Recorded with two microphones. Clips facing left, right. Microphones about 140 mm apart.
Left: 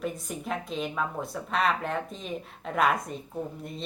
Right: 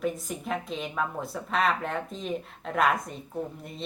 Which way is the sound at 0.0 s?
Centre (ahead or behind).